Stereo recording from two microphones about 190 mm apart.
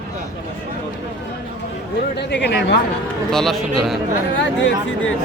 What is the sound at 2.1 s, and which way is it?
Speech, 65° left (ahead or behind).